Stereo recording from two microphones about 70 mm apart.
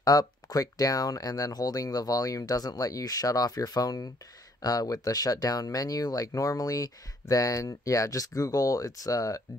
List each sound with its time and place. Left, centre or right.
0.0 s speech: left